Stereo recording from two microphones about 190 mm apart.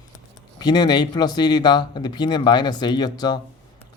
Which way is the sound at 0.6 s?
20° left (ahead or behind).